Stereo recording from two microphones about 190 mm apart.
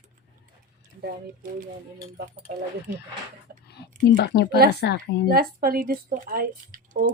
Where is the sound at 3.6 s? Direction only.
60° left (ahead or behind).